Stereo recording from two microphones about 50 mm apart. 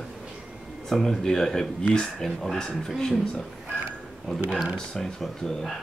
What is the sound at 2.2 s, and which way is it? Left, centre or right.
Speech, centre.